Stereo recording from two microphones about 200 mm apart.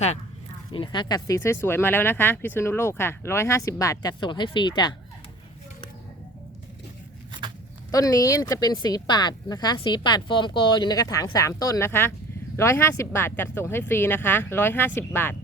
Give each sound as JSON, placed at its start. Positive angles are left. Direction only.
{"t": 0.7, "sound": "speech", "side_deg": 25}
{"t": 7.9, "sound": "speech", "side_deg": 15}